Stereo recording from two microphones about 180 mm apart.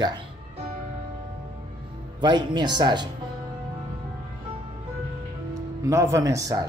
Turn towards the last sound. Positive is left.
turn(degrees=-20)  # may be behind; listen again after turning